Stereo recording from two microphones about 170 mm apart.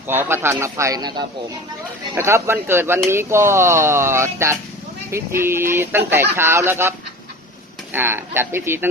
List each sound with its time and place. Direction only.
0.1 s speech: 15° right (ahead or behind)
7.9 s speech: 15° right (ahead or behind)